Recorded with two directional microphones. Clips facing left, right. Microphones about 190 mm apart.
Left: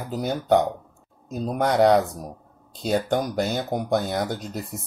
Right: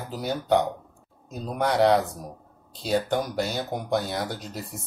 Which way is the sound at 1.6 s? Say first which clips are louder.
Left 2 dB; 45° left (ahead or behind).